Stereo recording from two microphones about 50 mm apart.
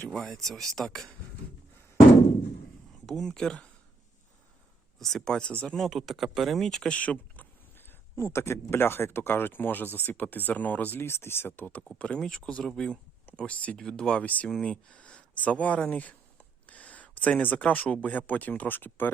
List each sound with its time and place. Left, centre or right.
0.1 s speech: centre
3.1 s speech: centre
4.9 s speech: centre
6.0 s speech: centre
6.8 s speech: left
8.1 s speech: left
11.0 s speech: left
11.5 s speech: left
11.9 s speech: left
13.7 s speech: centre
14.1 s speech: left
16.6 s a sound: left
17.4 s speech: left